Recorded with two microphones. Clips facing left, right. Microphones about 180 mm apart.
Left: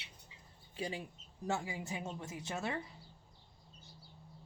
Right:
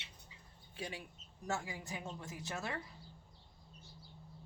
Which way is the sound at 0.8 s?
30° left (ahead or behind).